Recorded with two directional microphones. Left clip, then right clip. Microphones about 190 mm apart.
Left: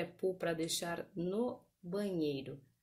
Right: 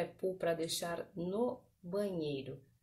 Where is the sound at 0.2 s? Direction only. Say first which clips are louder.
Even; 50° left (ahead or behind).